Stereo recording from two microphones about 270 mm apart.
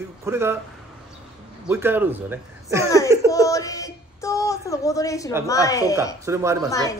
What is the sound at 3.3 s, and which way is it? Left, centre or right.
A woman's voice, centre.